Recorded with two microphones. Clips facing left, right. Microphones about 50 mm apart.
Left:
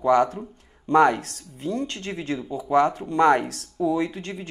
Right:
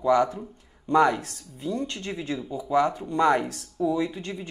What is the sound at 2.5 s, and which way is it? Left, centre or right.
Speech, left.